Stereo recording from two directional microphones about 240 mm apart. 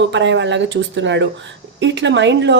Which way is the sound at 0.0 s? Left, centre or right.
Right.